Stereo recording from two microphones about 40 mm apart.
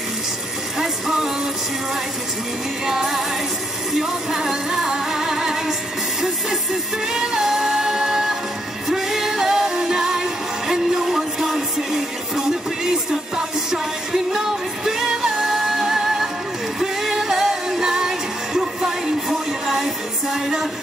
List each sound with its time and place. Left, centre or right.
0.7 s music: centre
2.9 s music: centre
7.1 s music: centre